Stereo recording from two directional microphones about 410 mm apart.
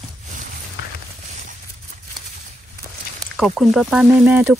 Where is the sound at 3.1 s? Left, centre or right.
Centre.